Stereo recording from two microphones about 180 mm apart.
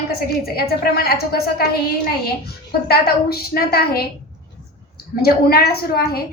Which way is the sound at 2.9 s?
55° left (ahead or behind).